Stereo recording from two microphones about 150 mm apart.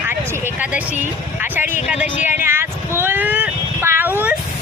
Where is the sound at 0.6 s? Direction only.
10° right (ahead or behind).